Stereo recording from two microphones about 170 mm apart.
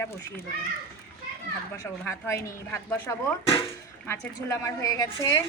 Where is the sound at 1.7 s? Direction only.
15° left (ahead or behind).